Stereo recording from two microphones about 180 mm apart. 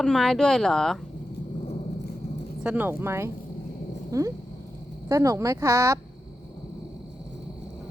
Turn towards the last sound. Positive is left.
turn(degrees=-15)  # may be behind; listen again after turning